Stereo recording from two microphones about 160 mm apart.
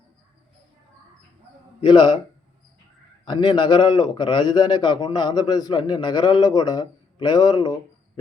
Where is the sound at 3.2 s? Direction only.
25° left (ahead or behind).